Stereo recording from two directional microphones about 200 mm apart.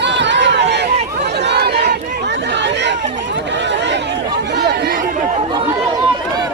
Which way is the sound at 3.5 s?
60° right (ahead or behind).